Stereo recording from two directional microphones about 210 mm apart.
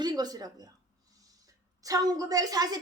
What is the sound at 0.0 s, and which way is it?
Speech, 20° right (ahead or behind).